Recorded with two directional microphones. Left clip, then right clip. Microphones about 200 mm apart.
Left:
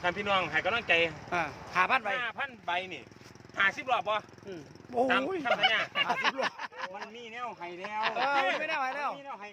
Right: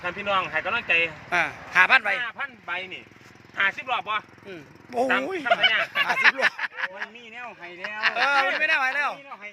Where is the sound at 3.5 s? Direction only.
60° left (ahead or behind).